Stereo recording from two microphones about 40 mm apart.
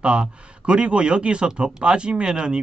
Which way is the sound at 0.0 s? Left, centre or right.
Right.